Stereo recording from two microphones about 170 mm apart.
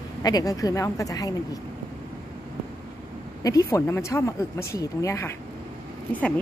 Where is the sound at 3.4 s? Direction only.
20° left (ahead or behind).